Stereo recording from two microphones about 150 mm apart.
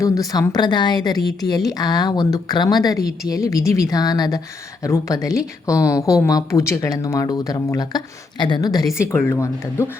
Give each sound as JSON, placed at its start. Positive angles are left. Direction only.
{"t": 0.0, "sound": "speech", "side_deg": 25}
{"t": 9.0, "sound": "speech", "side_deg": 15}